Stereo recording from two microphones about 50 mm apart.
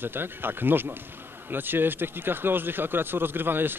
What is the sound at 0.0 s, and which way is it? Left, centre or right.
Speech, right.